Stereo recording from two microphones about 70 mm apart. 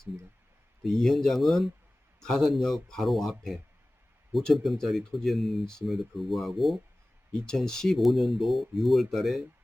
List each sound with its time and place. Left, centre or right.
0.9 s speech: centre